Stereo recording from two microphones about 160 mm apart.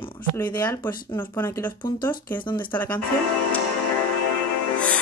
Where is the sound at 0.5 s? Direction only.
25° left (ahead or behind).